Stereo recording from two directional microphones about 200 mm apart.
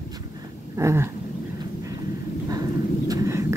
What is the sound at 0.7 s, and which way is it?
Speech, 15° right (ahead or behind).